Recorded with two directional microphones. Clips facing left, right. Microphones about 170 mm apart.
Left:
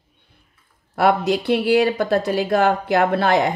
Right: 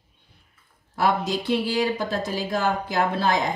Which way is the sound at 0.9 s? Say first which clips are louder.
Left 6 dB; 65° left (ahead or behind).